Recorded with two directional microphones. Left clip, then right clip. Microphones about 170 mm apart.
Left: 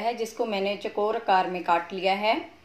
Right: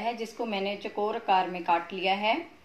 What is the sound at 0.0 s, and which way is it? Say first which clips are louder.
Speech: left 4 dB; 30° left (ahead or behind).